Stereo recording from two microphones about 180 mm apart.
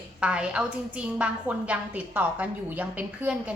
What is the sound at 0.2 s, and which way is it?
A woman's voice, 5° right (ahead or behind).